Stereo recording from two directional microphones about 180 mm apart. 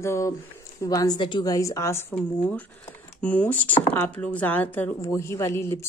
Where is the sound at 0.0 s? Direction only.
15° left (ahead or behind).